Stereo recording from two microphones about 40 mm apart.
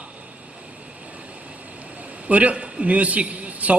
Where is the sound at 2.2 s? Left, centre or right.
Right.